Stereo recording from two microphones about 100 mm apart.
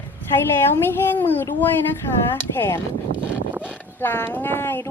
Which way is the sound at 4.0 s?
20° left (ahead or behind).